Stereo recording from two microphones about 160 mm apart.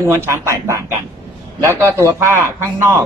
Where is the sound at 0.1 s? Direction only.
15° right (ahead or behind).